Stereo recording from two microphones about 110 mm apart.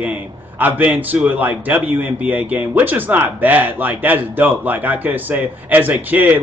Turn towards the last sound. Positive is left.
turn(degrees=-15)  # may be behind; listen again after turning